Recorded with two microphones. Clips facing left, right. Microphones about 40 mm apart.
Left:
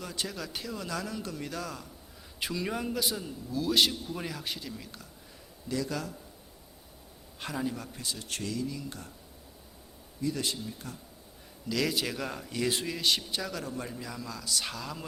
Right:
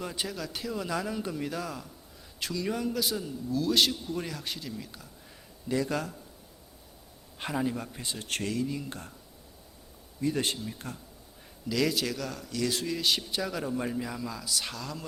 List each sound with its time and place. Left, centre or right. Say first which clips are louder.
0.0 s speech: right 2 dB; centre
0.3 s speech: right 2 dB; centre
2.4 s a man's voice: right 2 dB; centre
5.6 s speech: right 3 dB; right
7.3 s speech: right 3 dB; centre
8.3 s speech: right 4 dB; right
10.2 s speech: right 3 dB; right
11.7 s a man's voice: right 2 dB; centre
12.1 s a man's voice: even; left
12.9 s a man's voice: right 1 dB; centre
13.5 s speech: right 5 dB; centre
14.2 s a man's voice: right 1 dB; centre